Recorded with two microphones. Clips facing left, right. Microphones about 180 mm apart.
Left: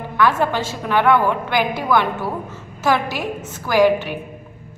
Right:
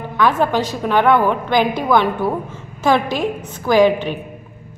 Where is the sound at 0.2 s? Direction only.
15° right (ahead or behind).